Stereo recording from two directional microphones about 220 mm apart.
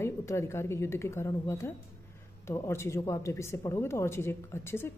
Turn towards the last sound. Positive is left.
turn(degrees=10)  # may be behind; listen again after turning